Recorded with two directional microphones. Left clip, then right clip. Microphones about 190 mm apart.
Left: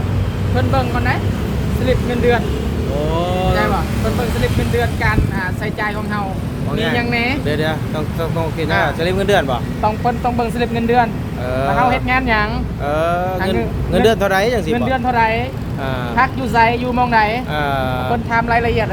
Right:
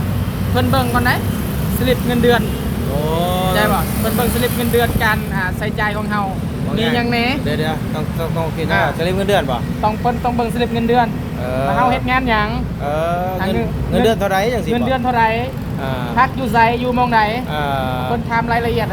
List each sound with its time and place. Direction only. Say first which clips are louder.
0.5 s speech: right 2 dB; 35° right (ahead or behind)
3.1 s vehicle: right 1 dB; 5° left (ahead or behind)
4.8 s speech: right 2 dB; 30° right (ahead or behind)
7.4 s speech: left 1 dB; 30° left (ahead or behind)
9.0 s speech: left 1 dB; 10° left (ahead or behind)
11.8 s speech: even; centre (ahead or behind)
12.9 s speech: left 2 dB; 20° left (ahead or behind)
14.8 s speech: right 1 dB; centre (ahead or behind)
17.6 s speech: left 1 dB; 20° left (ahead or behind)